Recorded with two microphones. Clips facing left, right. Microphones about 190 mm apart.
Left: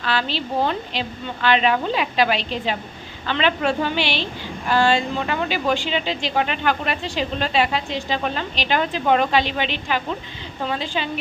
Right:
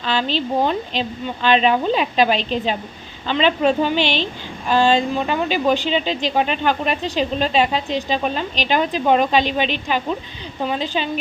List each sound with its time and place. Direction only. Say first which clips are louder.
0.0 s a woman's voice: right 3 dB; 20° right (ahead or behind)